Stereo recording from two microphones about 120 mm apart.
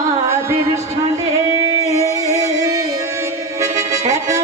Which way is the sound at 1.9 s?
30° right (ahead or behind).